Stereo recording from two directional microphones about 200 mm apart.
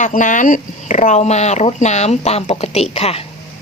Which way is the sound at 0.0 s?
40° left (ahead or behind).